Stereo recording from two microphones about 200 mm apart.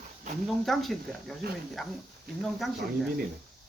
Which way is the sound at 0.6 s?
Centre (ahead or behind).